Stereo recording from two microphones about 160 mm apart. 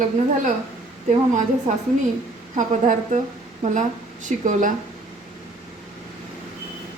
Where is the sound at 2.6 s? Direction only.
55° right (ahead or behind).